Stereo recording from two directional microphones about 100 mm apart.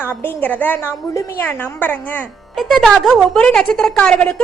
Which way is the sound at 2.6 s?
Centre (ahead or behind).